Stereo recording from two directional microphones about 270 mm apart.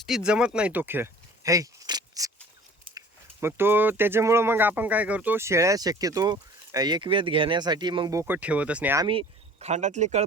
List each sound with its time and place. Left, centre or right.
0.0 s speech: centre
3.4 s speech: centre
9.0 s speech: right